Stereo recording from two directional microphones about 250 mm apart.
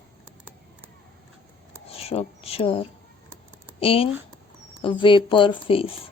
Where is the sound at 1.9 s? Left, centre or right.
Left.